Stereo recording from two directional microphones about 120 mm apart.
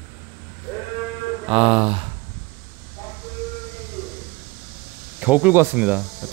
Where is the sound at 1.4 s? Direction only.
50° right (ahead or behind).